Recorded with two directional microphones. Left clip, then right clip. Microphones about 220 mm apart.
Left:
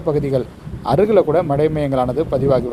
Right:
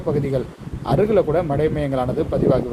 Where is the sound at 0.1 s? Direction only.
30° left (ahead or behind).